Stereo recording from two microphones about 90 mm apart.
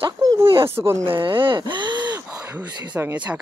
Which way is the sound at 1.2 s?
70° right (ahead or behind).